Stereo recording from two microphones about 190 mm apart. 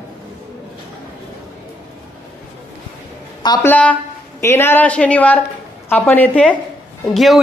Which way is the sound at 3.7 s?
10° left (ahead or behind).